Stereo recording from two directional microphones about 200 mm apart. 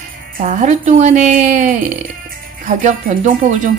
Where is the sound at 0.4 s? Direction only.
35° right (ahead or behind).